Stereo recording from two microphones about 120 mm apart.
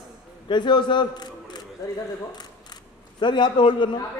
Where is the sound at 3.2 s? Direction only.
40° left (ahead or behind).